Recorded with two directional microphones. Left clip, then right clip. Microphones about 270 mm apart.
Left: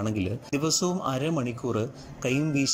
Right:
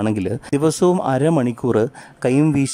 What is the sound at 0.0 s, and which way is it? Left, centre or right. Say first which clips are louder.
Speech: right 9 dB; right.